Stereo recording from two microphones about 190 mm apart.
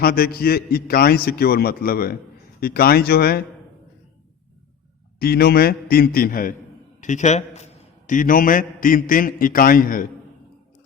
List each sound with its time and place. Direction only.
0.0 s a man's voice: 50° left (ahead or behind)
5.2 s a man's voice: 55° left (ahead or behind)